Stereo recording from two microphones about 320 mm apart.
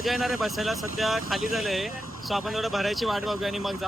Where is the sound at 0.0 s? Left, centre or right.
Centre.